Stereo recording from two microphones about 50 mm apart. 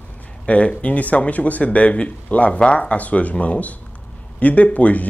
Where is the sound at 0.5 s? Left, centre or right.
Left.